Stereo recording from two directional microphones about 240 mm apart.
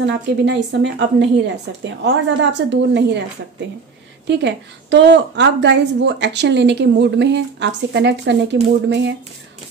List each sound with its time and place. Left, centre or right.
0.0 s a woman's voice: right
4.3 s a woman's voice: right